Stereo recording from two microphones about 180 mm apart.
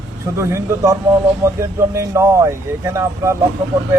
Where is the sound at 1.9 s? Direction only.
15° right (ahead or behind).